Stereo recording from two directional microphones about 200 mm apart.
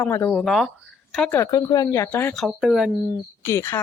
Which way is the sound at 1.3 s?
15° left (ahead or behind).